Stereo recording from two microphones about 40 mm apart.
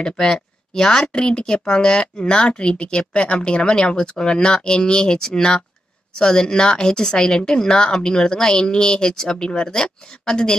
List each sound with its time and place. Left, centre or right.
0.2 s a woman's voice: centre